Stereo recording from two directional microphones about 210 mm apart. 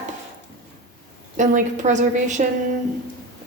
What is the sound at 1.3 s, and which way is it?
A woman's voice, 35° right (ahead or behind).